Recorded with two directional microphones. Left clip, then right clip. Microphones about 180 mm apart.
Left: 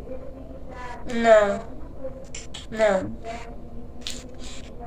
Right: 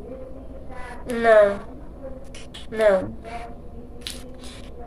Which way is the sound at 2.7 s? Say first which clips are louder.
Right 2 dB; 5° right (ahead or behind).